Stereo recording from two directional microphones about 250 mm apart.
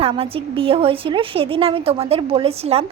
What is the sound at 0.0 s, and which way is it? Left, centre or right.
Speech, right.